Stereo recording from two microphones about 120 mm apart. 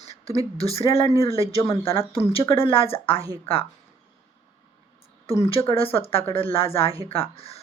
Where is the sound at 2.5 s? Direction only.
50° left (ahead or behind).